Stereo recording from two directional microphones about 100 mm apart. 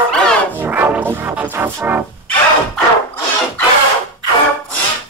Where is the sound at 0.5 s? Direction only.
20° right (ahead or behind).